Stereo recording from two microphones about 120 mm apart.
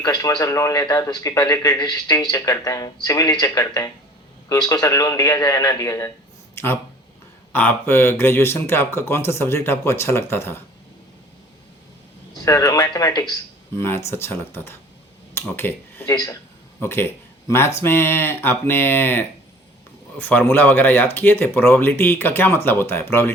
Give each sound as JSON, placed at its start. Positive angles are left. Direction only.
{"t": 0.0, "sound": "a man's voice", "side_deg": 30}
{"t": 7.5, "sound": "a man's voice", "side_deg": 15}
{"t": 12.3, "sound": "speech", "side_deg": 30}
{"t": 13.7, "sound": "a man's voice", "side_deg": 20}